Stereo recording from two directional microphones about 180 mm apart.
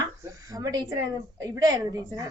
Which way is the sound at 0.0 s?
20° right (ahead or behind).